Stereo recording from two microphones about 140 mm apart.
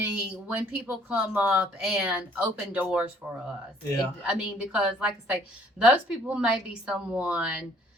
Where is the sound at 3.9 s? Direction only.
25° left (ahead or behind).